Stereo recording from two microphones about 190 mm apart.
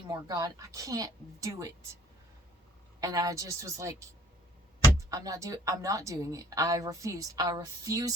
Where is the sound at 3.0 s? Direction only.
20° right (ahead or behind).